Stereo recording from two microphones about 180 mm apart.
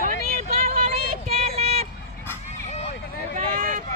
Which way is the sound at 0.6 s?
35° right (ahead or behind).